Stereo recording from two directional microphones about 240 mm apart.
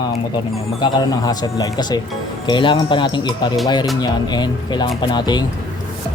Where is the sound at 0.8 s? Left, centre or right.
Centre.